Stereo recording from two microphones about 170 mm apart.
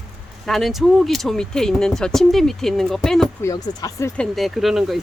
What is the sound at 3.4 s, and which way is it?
Speech, 20° left (ahead or behind).